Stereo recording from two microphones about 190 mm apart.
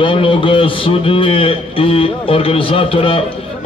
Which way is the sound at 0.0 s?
25° left (ahead or behind).